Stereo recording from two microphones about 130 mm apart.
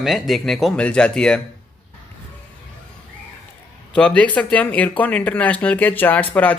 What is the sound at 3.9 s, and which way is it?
Speech, 10° left (ahead or behind).